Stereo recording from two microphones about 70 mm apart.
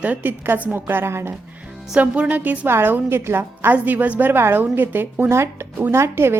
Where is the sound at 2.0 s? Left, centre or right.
Centre; by 6.3 s right.